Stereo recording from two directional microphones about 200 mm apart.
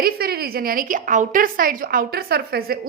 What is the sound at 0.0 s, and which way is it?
A woman's voice, 50° right (ahead or behind).